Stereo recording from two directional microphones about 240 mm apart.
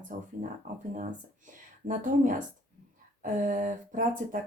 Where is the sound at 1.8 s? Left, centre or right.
Right.